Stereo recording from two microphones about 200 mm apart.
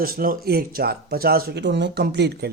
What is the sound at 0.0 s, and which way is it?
Speech, 45° right (ahead or behind).